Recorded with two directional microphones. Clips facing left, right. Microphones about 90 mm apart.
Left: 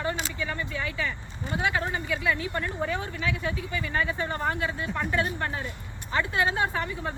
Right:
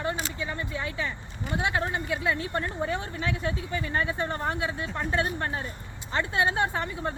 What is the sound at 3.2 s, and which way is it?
Speech, 35° right (ahead or behind).